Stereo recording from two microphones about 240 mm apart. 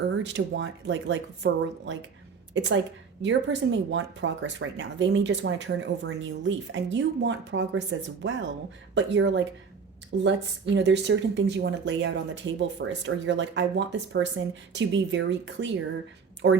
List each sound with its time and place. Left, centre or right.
0.2 s speech: right